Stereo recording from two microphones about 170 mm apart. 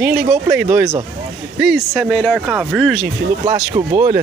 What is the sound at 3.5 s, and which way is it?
Speech, 25° right (ahead or behind).